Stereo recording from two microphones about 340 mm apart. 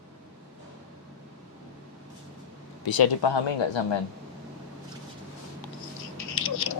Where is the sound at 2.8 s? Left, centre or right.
Left.